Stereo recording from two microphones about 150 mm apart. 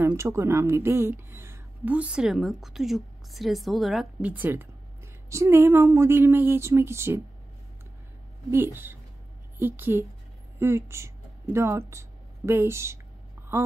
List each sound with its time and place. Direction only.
0.0 s speech: 20° right (ahead or behind)
8.5 s speech: 15° right (ahead or behind)